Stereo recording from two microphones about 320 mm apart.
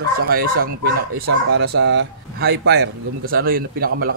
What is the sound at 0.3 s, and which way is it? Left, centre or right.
Speech, right.